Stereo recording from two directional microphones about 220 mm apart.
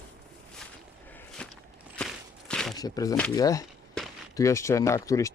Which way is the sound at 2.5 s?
Centre (ahead or behind).